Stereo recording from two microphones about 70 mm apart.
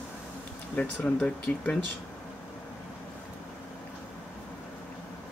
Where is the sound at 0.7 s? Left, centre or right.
Centre.